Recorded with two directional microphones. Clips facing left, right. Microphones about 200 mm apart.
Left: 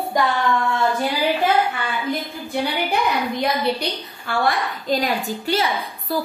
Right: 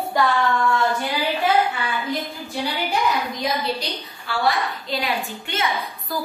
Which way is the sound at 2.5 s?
60° left (ahead or behind).